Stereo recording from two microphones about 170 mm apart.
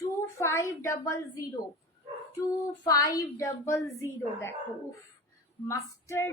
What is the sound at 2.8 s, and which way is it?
A woman's voice, 20° left (ahead or behind).